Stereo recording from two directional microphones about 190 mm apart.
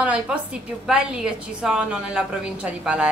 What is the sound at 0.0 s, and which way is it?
A woman's voice, 5° right (ahead or behind).